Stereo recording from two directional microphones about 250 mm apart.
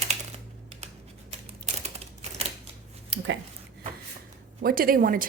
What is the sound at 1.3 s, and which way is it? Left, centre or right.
Typing, right.